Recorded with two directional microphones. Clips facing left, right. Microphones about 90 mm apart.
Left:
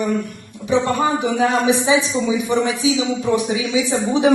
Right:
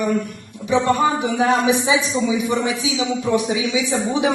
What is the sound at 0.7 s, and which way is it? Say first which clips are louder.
Speech: even; 30° left (ahead or behind).